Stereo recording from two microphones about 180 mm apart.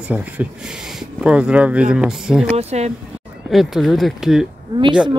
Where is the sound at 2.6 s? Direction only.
35° right (ahead or behind).